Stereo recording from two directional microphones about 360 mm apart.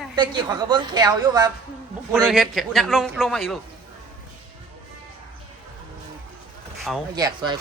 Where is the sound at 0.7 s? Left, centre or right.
Centre.